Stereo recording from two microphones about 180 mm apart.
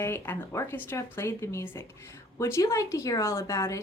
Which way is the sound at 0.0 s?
15° left (ahead or behind).